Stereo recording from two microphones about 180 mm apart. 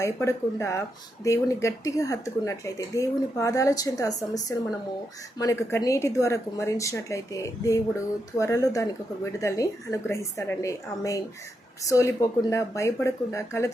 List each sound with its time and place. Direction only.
0.0 s a woman's voice: 15° left (ahead or behind)